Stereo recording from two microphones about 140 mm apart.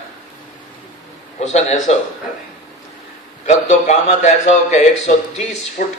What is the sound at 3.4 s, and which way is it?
A man's voice, 55° left (ahead or behind).